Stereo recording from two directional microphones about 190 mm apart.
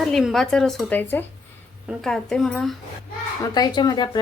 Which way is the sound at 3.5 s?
20° left (ahead or behind).